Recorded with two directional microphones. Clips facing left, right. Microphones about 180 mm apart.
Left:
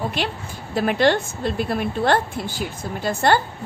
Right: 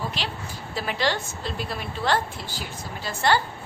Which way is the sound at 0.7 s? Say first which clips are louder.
Left 8 dB; 55° left (ahead or behind).